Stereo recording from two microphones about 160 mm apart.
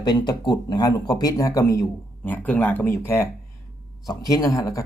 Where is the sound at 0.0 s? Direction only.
25° left (ahead or behind).